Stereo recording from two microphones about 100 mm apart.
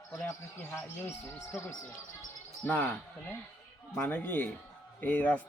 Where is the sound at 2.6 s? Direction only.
15° left (ahead or behind).